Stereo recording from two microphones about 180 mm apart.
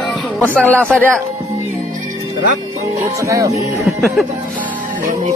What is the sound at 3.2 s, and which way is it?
Speech, 15° right (ahead or behind).